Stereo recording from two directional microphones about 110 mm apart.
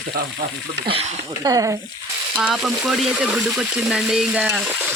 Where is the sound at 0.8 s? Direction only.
60° right (ahead or behind).